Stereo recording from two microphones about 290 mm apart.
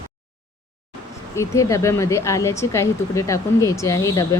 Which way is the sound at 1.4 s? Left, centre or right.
Centre.